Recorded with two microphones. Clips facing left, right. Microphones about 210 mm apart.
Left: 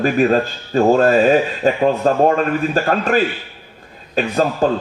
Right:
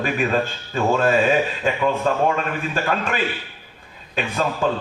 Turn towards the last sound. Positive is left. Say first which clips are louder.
# left 5 dB
turn(degrees=40)  # may be behind; listen again after turning